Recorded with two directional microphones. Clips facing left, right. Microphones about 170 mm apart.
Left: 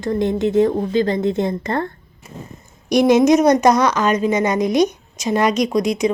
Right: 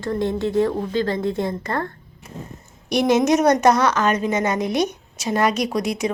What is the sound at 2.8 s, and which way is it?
A woman's voice, 15° left (ahead or behind).